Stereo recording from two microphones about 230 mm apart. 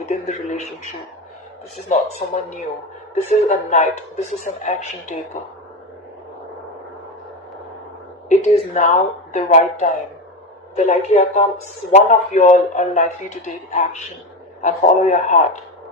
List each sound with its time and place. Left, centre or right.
0.3 s speech: left
1.9 s a woman's voice: left
8.3 s a woman's voice: left